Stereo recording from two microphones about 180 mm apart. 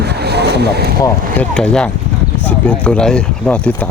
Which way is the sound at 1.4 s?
5° left (ahead or behind).